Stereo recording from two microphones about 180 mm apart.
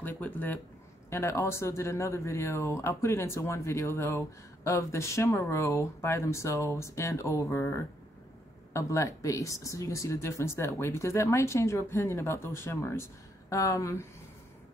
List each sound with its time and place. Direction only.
0.0 s speech: 10° left (ahead or behind)